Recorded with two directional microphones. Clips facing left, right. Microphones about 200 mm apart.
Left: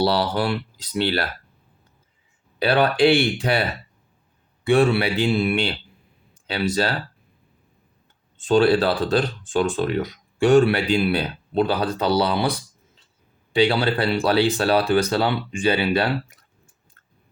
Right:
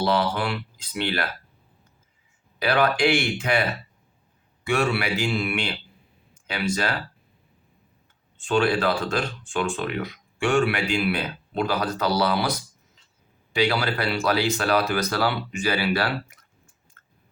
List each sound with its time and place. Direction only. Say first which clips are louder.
0.0 s speech: left 3 dB; 35° left (ahead or behind)
2.6 s speech: left 4 dB; 30° left (ahead or behind)
4.6 s speech: left 6 dB; 30° left (ahead or behind)
8.4 s speech: left 5 dB; 35° left (ahead or behind)